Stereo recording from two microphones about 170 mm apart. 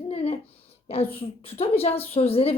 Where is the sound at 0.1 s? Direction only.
35° left (ahead or behind).